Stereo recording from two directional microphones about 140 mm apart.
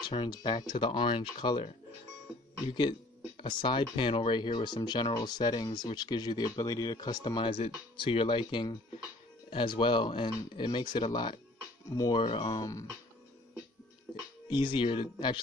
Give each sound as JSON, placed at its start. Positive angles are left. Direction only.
{"t": 0.0, "sound": "speech", "side_deg": 35}
{"t": 2.7, "sound": "speech", "side_deg": 35}
{"t": 14.5, "sound": "speech", "side_deg": 35}